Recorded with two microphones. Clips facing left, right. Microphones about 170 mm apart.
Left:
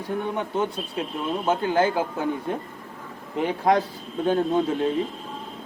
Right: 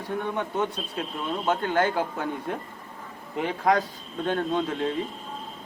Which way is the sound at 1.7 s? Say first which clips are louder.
Left 2 dB; 25° left (ahead or behind).